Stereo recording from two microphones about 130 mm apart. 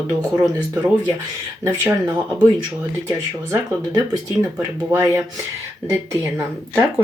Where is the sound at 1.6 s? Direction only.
20° right (ahead or behind).